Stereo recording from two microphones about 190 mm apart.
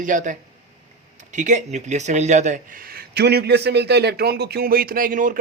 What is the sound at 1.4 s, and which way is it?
Speech, 40° right (ahead or behind).